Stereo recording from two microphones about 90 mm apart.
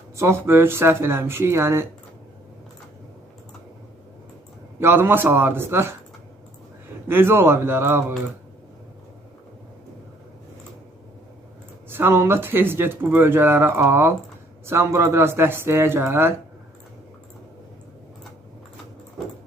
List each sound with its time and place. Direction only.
0.2 s speech: 30° right (ahead or behind)
4.8 s speech: 25° right (ahead or behind)
7.1 s speech: 25° right (ahead or behind)
11.9 s speech: 25° right (ahead or behind)